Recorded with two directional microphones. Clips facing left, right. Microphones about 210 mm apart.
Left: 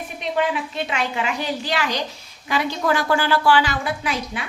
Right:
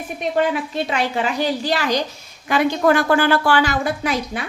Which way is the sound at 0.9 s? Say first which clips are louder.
Right 3 dB; 35° right (ahead or behind).